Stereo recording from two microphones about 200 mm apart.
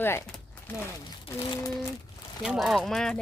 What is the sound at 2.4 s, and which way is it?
Speech, centre (ahead or behind).